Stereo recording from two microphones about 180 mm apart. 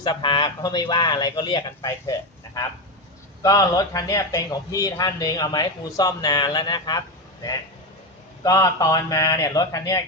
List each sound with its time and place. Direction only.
0.0 s speech: 25° left (ahead or behind)
3.4 s speech: 20° left (ahead or behind)
8.4 s speech: 20° left (ahead or behind)